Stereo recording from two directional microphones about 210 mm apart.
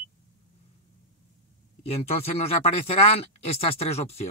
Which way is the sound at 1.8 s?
30° left (ahead or behind).